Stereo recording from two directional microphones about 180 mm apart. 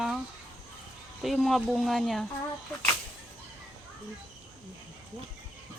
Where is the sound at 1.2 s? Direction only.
Centre (ahead or behind).